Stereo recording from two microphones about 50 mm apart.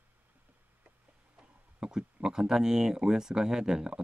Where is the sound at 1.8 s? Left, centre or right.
Centre.